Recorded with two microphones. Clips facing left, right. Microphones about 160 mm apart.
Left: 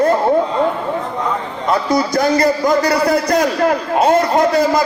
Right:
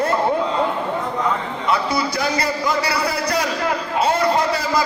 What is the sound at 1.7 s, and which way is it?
A man's voice, 45° left (ahead or behind).